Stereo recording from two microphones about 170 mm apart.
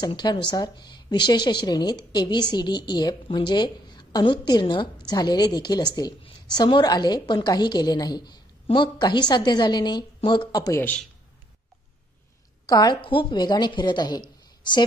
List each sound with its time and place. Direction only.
0.0 s a woman's voice: 25° left (ahead or behind); by 11.1 s 10° left (ahead or behind)
12.6 s a woman's voice: 25° left (ahead or behind)